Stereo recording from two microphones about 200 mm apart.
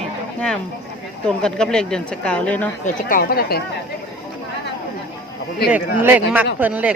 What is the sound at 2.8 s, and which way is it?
Speech, 45° left (ahead or behind).